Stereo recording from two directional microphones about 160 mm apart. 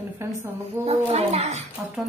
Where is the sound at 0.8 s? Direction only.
40° right (ahead or behind).